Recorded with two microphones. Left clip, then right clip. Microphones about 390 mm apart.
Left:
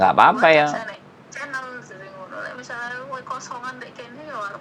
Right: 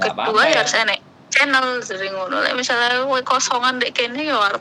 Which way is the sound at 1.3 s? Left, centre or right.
Right.